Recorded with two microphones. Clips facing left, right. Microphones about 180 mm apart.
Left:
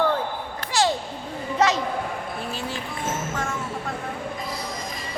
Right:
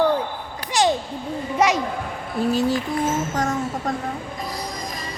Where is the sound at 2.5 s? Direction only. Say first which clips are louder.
Right 10 dB; 40° right (ahead or behind).